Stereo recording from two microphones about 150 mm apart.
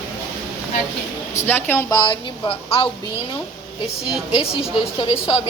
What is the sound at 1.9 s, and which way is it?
Speech, 30° left (ahead or behind).